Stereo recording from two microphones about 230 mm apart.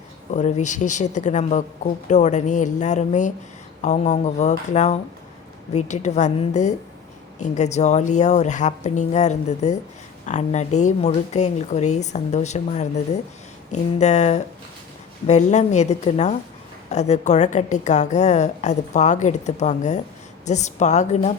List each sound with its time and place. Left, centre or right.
0.3 s a woman's voice: left